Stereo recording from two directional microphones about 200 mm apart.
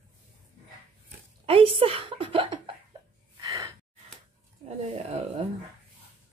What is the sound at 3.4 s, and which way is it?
Gasp, 15° right (ahead or behind).